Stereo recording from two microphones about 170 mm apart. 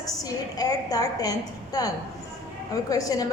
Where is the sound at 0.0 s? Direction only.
20° left (ahead or behind).